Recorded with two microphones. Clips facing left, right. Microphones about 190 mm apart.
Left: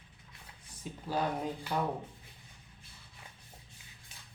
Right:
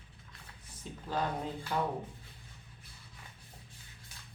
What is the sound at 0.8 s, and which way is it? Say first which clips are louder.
Speech: left 2 dB; 10° left (ahead or behind).